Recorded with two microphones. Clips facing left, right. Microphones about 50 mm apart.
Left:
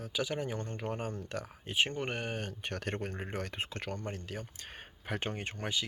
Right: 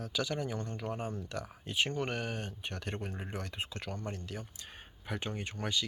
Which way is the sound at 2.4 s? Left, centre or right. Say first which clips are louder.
Left 3 dB; left.